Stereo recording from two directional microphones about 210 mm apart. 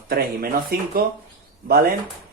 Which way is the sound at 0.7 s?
45° right (ahead or behind).